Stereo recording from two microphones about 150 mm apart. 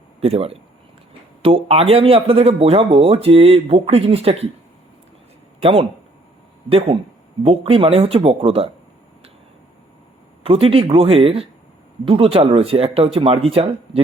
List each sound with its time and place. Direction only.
0.2 s speech: 40° right (ahead or behind)
6.7 s speech: 40° right (ahead or behind)
10.4 s speech: 40° right (ahead or behind)